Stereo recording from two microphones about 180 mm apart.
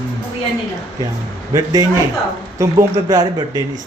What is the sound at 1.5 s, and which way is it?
Speech, 20° right (ahead or behind).